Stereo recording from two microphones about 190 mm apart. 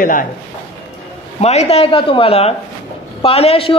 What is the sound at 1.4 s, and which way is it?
A man's voice, 35° left (ahead or behind).